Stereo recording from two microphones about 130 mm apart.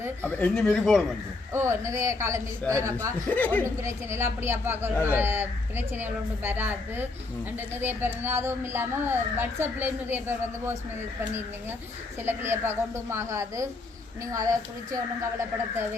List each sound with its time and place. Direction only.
0.3 s speech: 10° left (ahead or behind)
1.5 s a man's voice: 20° right (ahead or behind)
3.2 s speech: 15° left (ahead or behind)
3.8 s a woman's voice: 20° right (ahead or behind)
12.2 s a man's voice: 20° right (ahead or behind)
14.9 s a man's voice: 20° right (ahead or behind)